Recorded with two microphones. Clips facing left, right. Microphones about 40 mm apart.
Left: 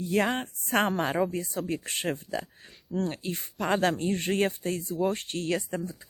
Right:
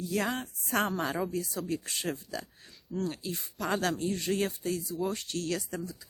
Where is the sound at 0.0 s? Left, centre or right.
Left.